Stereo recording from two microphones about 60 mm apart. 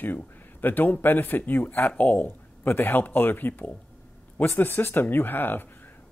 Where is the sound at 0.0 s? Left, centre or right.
Left.